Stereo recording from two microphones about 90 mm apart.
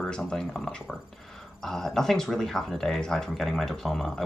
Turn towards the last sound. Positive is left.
turn(degrees=5)  # may be behind; listen again after turning